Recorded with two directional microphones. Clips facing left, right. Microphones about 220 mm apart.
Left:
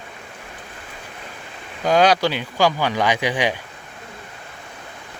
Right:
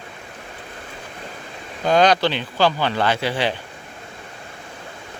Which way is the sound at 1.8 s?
10° left (ahead or behind).